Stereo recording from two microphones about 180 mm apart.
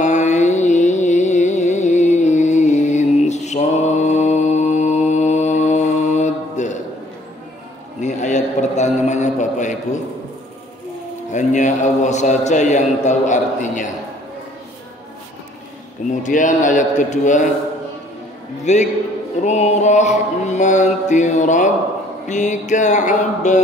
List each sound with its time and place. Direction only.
0.0 s music: 40° left (ahead or behind)
8.0 s a sound: 40° left (ahead or behind)
11.3 s a man's voice: 45° left (ahead or behind)
16.1 s a man's voice: 45° left (ahead or behind)
18.7 s mantra: 40° left (ahead or behind)
22.3 s a man's voice: 40° left (ahead or behind)